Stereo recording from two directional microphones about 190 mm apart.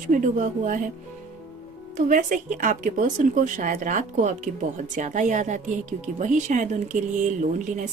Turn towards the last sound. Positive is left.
turn(degrees=-40)  # may be behind; listen again after turning